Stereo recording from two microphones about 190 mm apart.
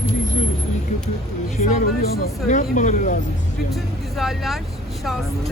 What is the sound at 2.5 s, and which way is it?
Speech, 40° left (ahead or behind).